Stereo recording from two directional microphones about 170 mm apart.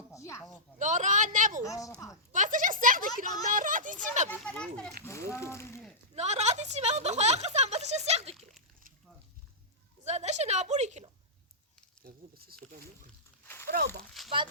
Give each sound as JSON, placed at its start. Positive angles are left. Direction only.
{"t": 0.1, "sound": "a sound", "side_deg": 15}
{"t": 0.8, "sound": "a woman's voice", "side_deg": -45}
{"t": 1.6, "sound": "a woman's voice", "side_deg": 20}
{"t": 2.3, "sound": "a sound", "side_deg": -50}
{"t": 3.2, "sound": "a woman's voice", "side_deg": -50}
{"t": 4.4, "sound": "speech", "side_deg": 5}
{"t": 5.0, "sound": "speech", "side_deg": 15}
{"t": 6.1, "sound": "speech", "side_deg": -40}
{"t": 8.4, "sound": "splash", "side_deg": 0}
{"t": 10.0, "sound": "a woman's voice", "side_deg": -40}
{"t": 12.0, "sound": "a sound", "side_deg": -65}
{"t": 13.4, "sound": "a sound", "side_deg": 15}
{"t": 13.7, "sound": "speech", "side_deg": -65}